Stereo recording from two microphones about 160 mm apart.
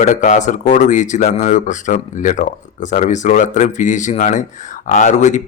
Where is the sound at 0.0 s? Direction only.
50° left (ahead or behind).